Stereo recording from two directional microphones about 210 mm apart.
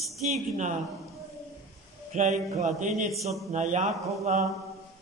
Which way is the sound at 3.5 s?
35° right (ahead or behind).